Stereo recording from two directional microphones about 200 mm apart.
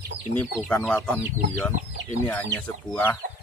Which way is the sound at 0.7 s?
10° left (ahead or behind).